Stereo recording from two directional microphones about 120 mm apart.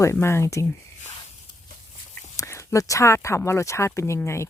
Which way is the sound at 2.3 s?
25° left (ahead or behind).